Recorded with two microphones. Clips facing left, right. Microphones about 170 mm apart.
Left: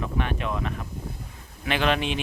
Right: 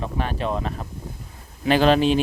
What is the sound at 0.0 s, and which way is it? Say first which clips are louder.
Speech: right 2 dB; 35° right (ahead or behind).